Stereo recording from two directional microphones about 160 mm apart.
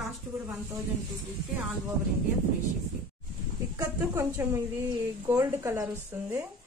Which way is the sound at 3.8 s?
20° right (ahead or behind).